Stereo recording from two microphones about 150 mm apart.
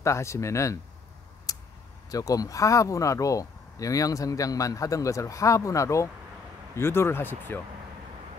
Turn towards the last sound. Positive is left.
turn(degrees=15)  # may be behind; listen again after turning